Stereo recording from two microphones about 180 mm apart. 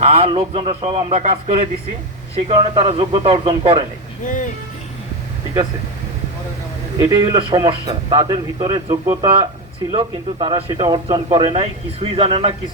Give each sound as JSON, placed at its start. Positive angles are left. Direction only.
{"t": 0.0, "sound": "a man's voice", "side_deg": -35}
{"t": 7.0, "sound": "a man's voice", "side_deg": -20}